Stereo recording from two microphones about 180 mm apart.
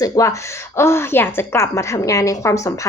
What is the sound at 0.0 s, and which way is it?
A woman's voice, 20° left (ahead or behind).